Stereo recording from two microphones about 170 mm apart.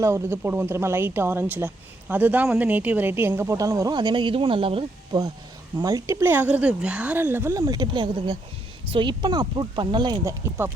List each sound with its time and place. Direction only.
0.0 s a woman's voice: 15° right (ahead or behind); by 4.9 s 30° right (ahead or behind)
5.8 s a woman's voice: 20° right (ahead or behind)